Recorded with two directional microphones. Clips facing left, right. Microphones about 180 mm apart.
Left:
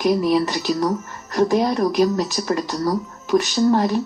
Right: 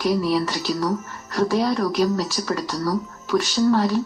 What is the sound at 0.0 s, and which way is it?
Speech, 15° left (ahead or behind).